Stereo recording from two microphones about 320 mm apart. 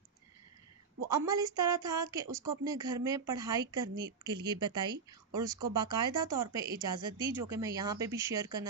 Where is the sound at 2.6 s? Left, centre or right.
Centre.